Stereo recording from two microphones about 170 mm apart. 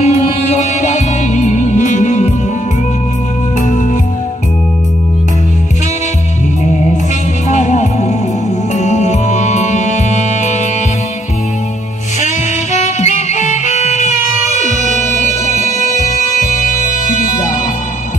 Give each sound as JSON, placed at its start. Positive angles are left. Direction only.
{"t": 0.0, "sound": "music", "side_deg": 40}
{"t": 7.4, "sound": "music", "side_deg": 45}
{"t": 12.7, "sound": "music", "side_deg": 40}